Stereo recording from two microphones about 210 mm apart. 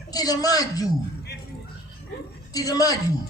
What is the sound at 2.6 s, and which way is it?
Speech, 15° left (ahead or behind).